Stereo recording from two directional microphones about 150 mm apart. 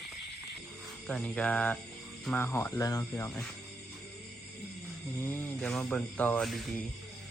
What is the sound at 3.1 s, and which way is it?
Speech, 10° left (ahead or behind).